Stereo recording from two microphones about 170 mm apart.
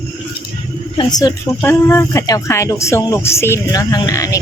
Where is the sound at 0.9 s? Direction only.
20° left (ahead or behind).